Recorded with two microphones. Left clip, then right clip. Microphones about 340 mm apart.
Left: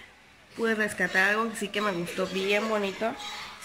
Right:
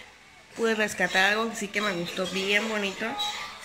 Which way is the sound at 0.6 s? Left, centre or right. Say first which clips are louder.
Right 2 dB; centre.